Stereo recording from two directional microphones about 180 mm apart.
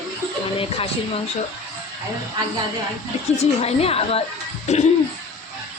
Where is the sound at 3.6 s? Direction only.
35° left (ahead or behind).